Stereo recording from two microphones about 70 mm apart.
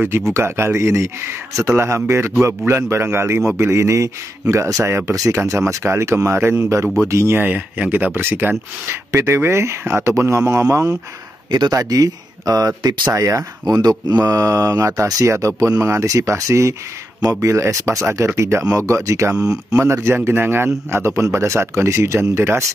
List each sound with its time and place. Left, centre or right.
0.3 s a man's voice: right
7.3 s a man's voice: right
13.1 s speech: right
19.3 s speech: centre
19.7 s a man's voice: right